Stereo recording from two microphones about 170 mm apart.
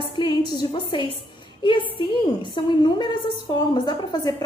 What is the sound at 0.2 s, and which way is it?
A woman's voice, 30° left (ahead or behind).